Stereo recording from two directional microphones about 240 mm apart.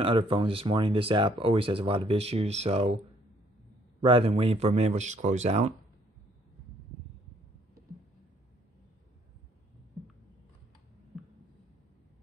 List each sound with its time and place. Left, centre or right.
0.0 s speech: right
4.0 s speech: right
11.1 s heart sounds: centre